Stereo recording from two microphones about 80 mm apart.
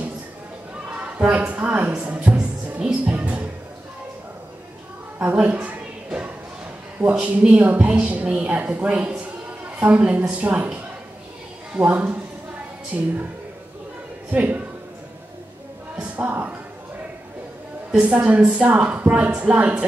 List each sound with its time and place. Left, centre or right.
0.9 s speech: centre
5.2 s a sound: centre
7.0 s a woman's voice: centre
14.3 s a woman's voice: centre
16.0 s a sound: centre
17.9 s a woman's voice: centre